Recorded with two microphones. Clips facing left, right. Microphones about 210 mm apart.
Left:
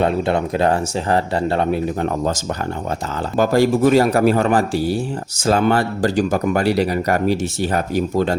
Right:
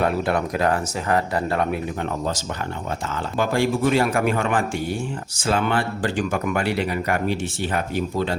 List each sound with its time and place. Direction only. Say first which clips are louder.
0.0 s speech: left 4 dB; 25° left (ahead or behind)
3.3 s speech: left 6 dB; 40° left (ahead or behind)